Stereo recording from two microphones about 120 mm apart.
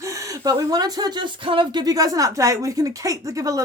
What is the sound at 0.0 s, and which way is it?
Speech, 25° right (ahead or behind).